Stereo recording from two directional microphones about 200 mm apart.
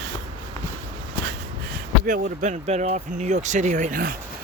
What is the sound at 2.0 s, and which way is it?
Speech, 40° right (ahead or behind).